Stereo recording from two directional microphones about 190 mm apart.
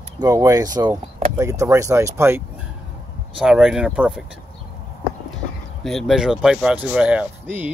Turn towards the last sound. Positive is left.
turn(degrees=-5)  # may be behind; listen again after turning